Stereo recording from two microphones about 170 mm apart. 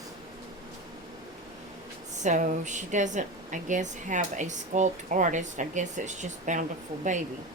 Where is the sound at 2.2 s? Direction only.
45° right (ahead or behind).